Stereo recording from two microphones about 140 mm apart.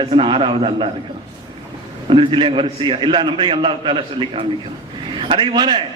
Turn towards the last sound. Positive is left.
turn(degrees=-30)  # may be behind; listen again after turning